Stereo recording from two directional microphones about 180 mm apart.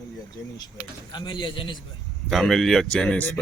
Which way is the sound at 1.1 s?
25° left (ahead or behind).